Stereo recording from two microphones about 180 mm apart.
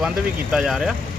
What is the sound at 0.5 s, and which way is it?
Speech, 5° right (ahead or behind).